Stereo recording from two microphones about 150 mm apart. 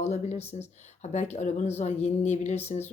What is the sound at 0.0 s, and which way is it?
A woman's voice, 45° left (ahead or behind).